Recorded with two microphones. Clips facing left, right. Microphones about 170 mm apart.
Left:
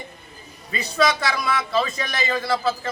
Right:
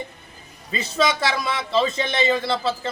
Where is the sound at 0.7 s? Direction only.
25° right (ahead or behind).